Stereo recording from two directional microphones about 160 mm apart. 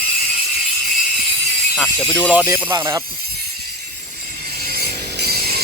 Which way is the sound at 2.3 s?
10° right (ahead or behind).